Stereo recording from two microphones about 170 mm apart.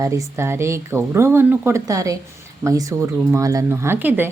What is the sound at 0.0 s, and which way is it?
Speech, 15° right (ahead or behind).